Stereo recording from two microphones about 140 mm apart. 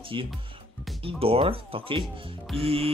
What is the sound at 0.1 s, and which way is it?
Speech, 35° right (ahead or behind).